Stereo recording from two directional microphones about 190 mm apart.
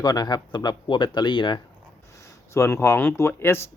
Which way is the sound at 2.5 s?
15° left (ahead or behind).